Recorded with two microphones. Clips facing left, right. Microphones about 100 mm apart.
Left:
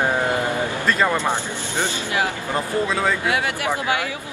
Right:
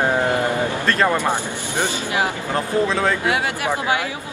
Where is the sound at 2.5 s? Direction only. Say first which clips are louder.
Right 3 dB; 5° left (ahead or behind).